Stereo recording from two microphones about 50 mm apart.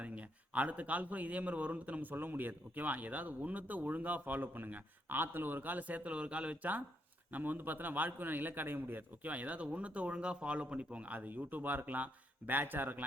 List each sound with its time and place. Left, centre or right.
0.0 s speech: right
7.3 s speech: right